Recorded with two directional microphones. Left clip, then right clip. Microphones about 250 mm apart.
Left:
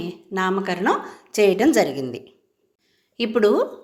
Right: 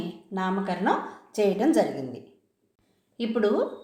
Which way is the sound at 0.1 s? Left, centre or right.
Left.